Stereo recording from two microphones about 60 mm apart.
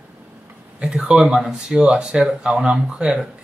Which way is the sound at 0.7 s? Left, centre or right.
Centre.